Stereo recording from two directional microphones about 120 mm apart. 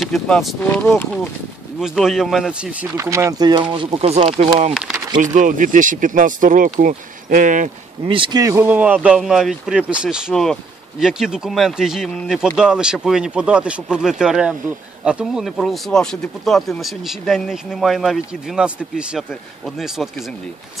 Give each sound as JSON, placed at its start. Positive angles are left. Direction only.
{"t": 0.0, "sound": "speech", "side_deg": 0}
{"t": 0.6, "sound": "speech", "side_deg": 10}
{"t": 1.8, "sound": "speech", "side_deg": -5}
{"t": 3.3, "sound": "speech", "side_deg": -35}
{"t": 3.7, "sound": "speech", "side_deg": -45}
{"t": 4.0, "sound": "speech", "side_deg": -65}
{"t": 4.7, "sound": "speech", "side_deg": -5}
{"t": 5.2, "sound": "speech", "side_deg": -90}
{"t": 8.1, "sound": "speech", "side_deg": -40}
{"t": 8.5, "sound": "speech", "side_deg": -15}